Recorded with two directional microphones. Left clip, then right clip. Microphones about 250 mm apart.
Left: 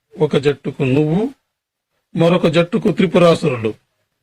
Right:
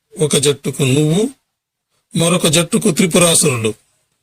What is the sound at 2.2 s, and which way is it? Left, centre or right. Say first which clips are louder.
Speech: left 1 dB; right.